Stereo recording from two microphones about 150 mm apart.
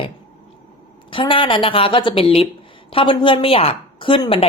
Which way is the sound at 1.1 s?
35° left (ahead or behind).